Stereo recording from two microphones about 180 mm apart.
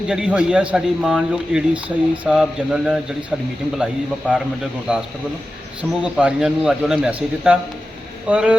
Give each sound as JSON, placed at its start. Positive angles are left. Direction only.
{"t": 0.1, "sound": "a man's voice", "side_deg": -5}
{"t": 4.2, "sound": "a man's voice", "side_deg": 5}
{"t": 4.9, "sound": "a man's voice", "side_deg": -5}